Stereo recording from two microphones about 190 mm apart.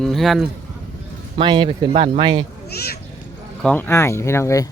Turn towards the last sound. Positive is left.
turn(degrees=15)  # may be behind; listen again after turning